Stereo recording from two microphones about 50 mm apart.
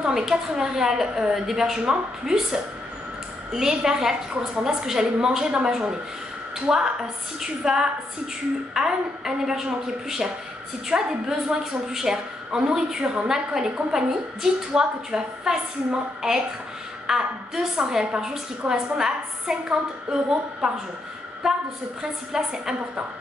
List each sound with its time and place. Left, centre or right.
0.0 s a woman's voice: centre
21.4 s a woman's voice: centre